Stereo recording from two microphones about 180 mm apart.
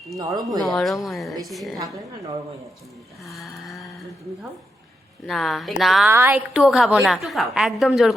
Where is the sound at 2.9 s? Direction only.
Centre (ahead or behind).